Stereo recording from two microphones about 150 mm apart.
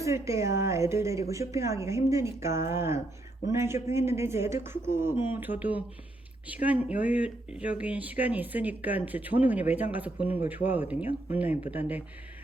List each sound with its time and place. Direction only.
0.0 s a woman's voice: 20° right (ahead or behind)